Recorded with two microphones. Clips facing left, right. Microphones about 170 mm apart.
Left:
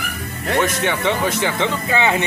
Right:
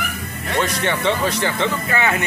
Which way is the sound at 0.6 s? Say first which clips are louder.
Right 2 dB; 20° left (ahead or behind).